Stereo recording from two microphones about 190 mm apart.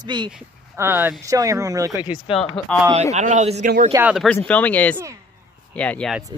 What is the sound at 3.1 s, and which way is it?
Speech, 40° right (ahead or behind).